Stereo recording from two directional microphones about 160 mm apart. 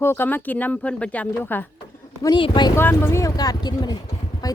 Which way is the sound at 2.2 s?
30° left (ahead or behind).